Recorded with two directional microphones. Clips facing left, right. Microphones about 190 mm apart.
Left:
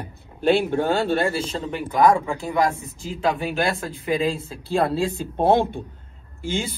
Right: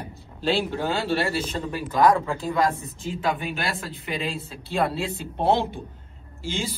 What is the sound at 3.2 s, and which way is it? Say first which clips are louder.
Speech: left 5 dB; 35° left (ahead or behind).